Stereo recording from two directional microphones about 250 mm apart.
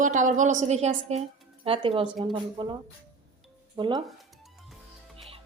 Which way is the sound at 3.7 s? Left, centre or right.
Centre.